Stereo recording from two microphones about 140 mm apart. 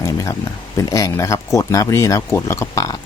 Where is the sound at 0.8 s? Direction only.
25° left (ahead or behind).